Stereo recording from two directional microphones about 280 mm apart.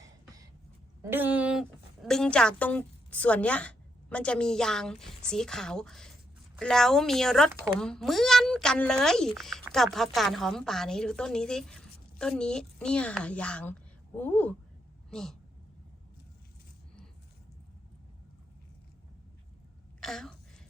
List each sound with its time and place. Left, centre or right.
1.1 s a woman's voice: centre
20.0 s a woman's voice: centre